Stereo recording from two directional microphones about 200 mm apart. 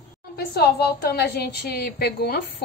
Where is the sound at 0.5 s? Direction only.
55° left (ahead or behind).